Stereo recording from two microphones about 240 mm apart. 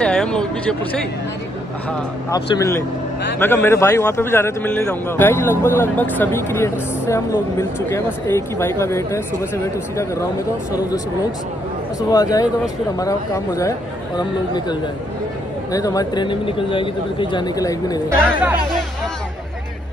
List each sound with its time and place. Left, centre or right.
0.0 s speech: centre
2.3 s a man's voice: centre
12.1 s a man's voice: centre
18.1 s speech: centre